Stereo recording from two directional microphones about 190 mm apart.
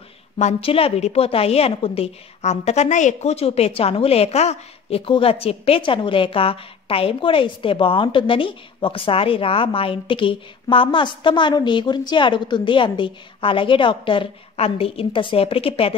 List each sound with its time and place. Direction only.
0.4 s a woman's voice: 35° left (ahead or behind)